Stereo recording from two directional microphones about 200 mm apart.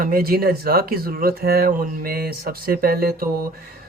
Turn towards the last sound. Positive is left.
turn(degrees=-50)  # may be behind; listen again after turning